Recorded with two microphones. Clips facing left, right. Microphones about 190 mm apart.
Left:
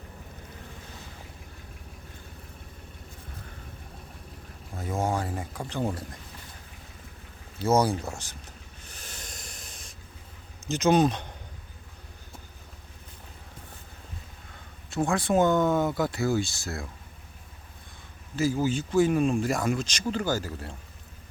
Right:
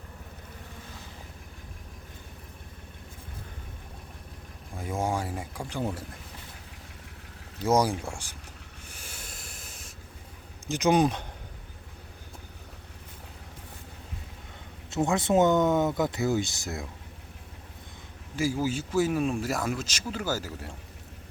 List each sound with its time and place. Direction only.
4.8 s speech: 10° right (ahead or behind)
7.7 s speech: 10° right (ahead or behind)
8.9 s a sound: 10° right (ahead or behind)
10.7 s speech: 15° right (ahead or behind)
14.8 s speech: 20° right (ahead or behind)
18.3 s speech: 10° right (ahead or behind)